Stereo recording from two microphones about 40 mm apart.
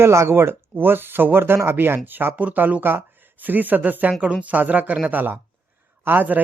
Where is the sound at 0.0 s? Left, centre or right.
Right.